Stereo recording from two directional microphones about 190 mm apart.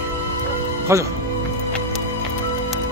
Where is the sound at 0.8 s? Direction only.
15° right (ahead or behind).